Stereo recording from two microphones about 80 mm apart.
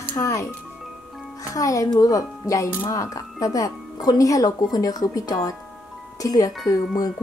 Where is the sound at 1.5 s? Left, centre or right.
Left.